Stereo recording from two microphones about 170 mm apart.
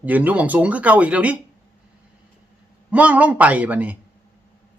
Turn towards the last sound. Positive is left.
turn(degrees=-10)  # may be behind; listen again after turning